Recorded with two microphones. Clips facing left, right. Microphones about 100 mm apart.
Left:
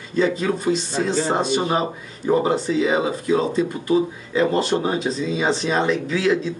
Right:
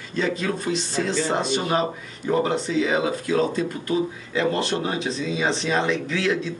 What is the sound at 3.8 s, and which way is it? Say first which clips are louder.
Speech: left 4 dB; 25° left (ahead or behind).